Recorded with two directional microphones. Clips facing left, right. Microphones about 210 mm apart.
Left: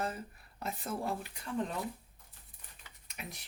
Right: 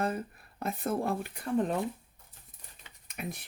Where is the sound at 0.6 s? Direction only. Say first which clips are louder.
Right 6 dB; 55° right (ahead or behind).